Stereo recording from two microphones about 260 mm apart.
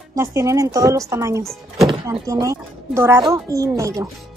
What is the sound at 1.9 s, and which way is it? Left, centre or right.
Speech, centre.